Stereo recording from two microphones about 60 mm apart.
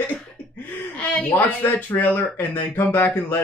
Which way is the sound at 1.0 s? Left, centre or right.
Centre.